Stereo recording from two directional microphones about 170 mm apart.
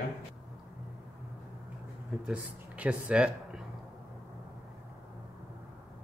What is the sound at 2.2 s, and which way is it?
Speech, 10° right (ahead or behind).